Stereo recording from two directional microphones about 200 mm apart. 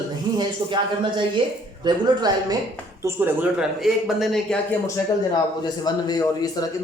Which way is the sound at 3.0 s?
10° right (ahead or behind).